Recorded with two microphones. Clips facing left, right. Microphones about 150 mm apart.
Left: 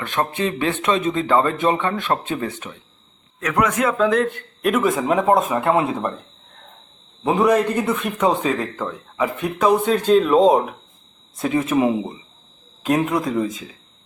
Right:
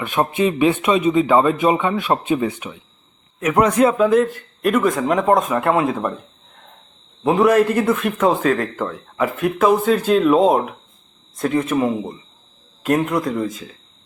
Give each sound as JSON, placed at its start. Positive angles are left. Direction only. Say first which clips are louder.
{"t": 0.0, "sound": "a man's voice", "louder": "right 4 dB", "side_deg": -15}
{"t": 3.4, "sound": "a man's voice", "louder": "right 5 dB", "side_deg": -30}
{"t": 3.9, "sound": "speech", "louder": "right 3 dB", "side_deg": -5}
{"t": 7.3, "sound": "speech", "louder": "right 3 dB", "side_deg": 0}